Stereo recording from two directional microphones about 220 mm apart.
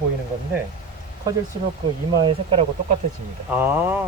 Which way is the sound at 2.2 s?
25° right (ahead or behind).